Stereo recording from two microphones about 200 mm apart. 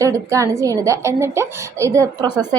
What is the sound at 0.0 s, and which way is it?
A woman's voice, 15° right (ahead or behind).